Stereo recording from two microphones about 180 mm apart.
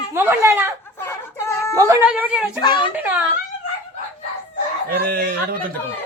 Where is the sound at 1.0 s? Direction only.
15° left (ahead or behind).